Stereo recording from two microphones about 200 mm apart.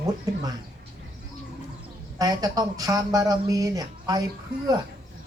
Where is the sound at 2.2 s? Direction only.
20° right (ahead or behind).